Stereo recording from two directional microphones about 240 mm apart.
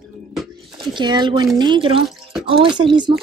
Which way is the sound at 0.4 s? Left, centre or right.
Centre.